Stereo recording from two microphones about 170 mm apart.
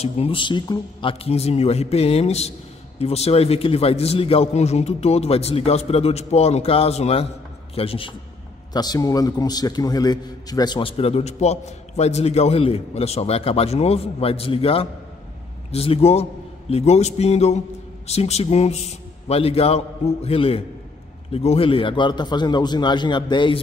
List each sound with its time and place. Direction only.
0.0 s a man's voice: 30° left (ahead or behind)
8.7 s a man's voice: 25° left (ahead or behind)